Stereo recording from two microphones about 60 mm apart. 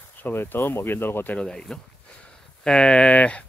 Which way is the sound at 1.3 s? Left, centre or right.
Centre.